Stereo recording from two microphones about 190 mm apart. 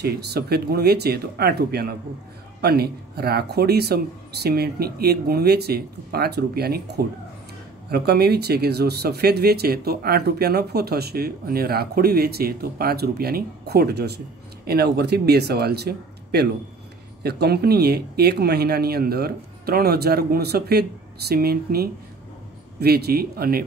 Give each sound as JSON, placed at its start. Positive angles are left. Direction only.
{"t": 0.0, "sound": "speech", "side_deg": -55}